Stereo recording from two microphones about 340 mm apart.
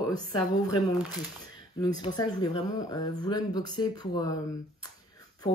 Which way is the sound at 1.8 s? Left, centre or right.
Centre.